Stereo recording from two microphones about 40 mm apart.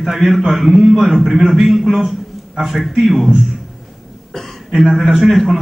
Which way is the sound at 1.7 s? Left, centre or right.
Centre.